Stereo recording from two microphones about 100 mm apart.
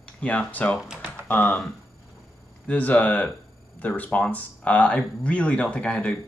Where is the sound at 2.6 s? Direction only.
15° left (ahead or behind).